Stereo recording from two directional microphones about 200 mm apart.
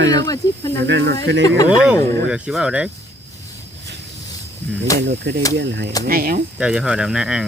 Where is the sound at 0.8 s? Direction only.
60° right (ahead or behind).